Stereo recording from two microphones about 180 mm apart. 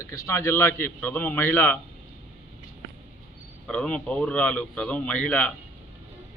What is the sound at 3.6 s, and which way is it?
A man's voice, 5° left (ahead or behind).